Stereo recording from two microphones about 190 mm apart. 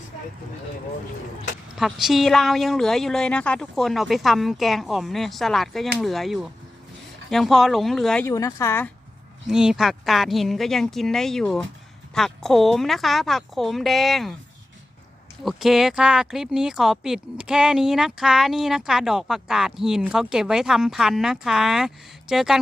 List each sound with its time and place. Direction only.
1.7 s speech: centre (ahead or behind)
8.2 s a woman's voice: 15° left (ahead or behind)
9.5 s speech: 5° right (ahead or behind)
15.4 s speech: centre (ahead or behind)